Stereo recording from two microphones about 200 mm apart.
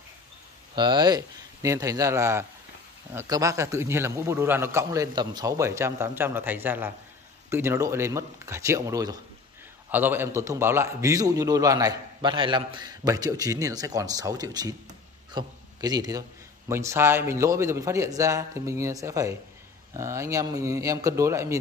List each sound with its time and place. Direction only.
0.7 s a man's voice: 20° right (ahead or behind)